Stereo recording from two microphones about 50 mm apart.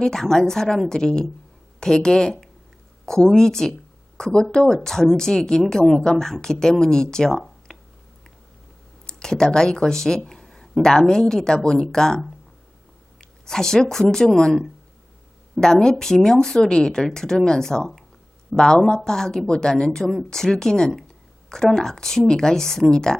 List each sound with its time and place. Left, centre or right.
0.0 s speech: centre
7.3 s a sound: centre
9.0 s speech: centre
13.4 s a woman's voice: centre
15.6 s speech: centre